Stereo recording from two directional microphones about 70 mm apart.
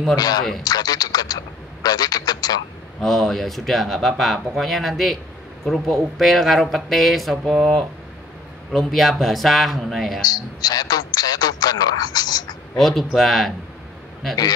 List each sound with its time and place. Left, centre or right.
0.1 s a man's voice: left
3.0 s speech: centre
10.3 s a man's voice: left
12.7 s speech: centre